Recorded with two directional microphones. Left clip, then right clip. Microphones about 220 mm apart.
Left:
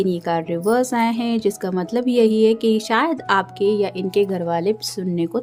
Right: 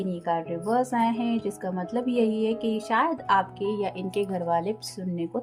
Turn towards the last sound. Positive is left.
turn(degrees=45)  # may be behind; listen again after turning